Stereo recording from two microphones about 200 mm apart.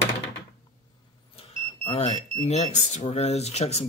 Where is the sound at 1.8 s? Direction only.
30° left (ahead or behind).